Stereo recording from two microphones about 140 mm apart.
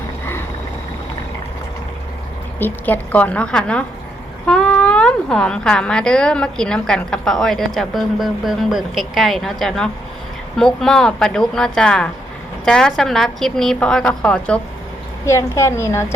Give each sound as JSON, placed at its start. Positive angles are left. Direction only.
{"t": 2.6, "sound": "a woman's voice", "side_deg": 15}
{"t": 15.3, "sound": "a woman's voice", "side_deg": 20}